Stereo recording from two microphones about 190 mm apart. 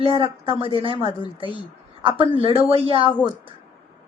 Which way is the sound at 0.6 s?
30° right (ahead or behind).